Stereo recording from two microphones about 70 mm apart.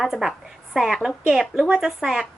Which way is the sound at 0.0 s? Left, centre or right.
Centre.